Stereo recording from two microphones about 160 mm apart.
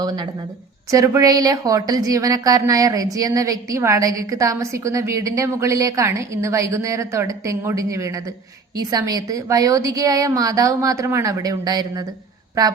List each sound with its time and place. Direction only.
0.9 s a woman's voice: 20° right (ahead or behind)